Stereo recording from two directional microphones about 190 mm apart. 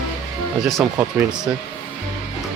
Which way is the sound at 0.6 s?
Centre (ahead or behind).